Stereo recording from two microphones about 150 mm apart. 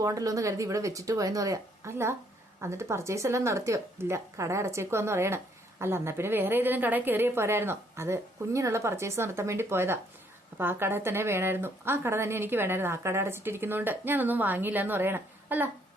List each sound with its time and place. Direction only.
0.0 s a woman's voice: 20° right (ahead or behind)